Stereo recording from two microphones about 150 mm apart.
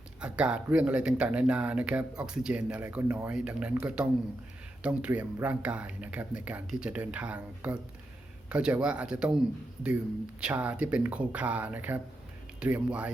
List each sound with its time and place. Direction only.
0.2 s speech: 5° right (ahead or behind)
10.4 s speech: 10° right (ahead or behind)